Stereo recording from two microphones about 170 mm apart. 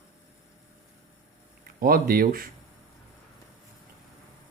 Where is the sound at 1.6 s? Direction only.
60° right (ahead or behind).